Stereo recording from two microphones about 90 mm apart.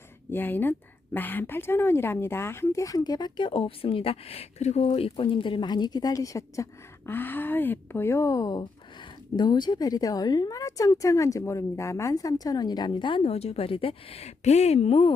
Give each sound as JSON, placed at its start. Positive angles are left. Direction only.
{"t": 0.3, "sound": "a woman's voice", "side_deg": 20}
{"t": 7.1, "sound": "speech", "side_deg": 20}